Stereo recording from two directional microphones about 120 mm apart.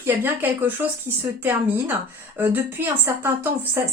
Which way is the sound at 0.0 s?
20° right (ahead or behind).